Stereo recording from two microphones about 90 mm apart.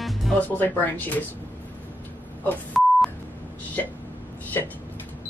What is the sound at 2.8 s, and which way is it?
Beep, centre (ahead or behind).